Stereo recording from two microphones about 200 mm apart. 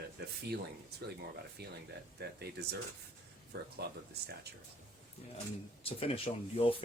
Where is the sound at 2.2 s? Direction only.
55° right (ahead or behind).